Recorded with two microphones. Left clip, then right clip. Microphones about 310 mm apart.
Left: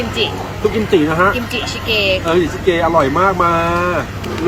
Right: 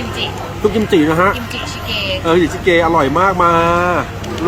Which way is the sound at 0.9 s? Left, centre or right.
Right.